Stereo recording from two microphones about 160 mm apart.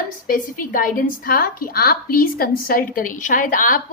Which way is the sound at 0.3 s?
60° left (ahead or behind).